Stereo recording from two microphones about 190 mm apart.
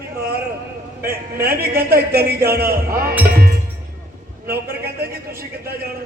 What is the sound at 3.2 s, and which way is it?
Music, 50° right (ahead or behind).